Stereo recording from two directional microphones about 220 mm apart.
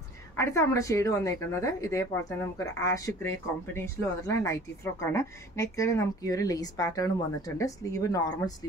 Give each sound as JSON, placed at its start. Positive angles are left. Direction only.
{"t": 0.4, "sound": "speech", "side_deg": 15}